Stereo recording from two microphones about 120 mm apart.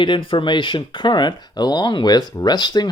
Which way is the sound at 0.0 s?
45° left (ahead or behind).